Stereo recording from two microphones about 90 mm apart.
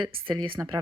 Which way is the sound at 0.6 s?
20° right (ahead or behind).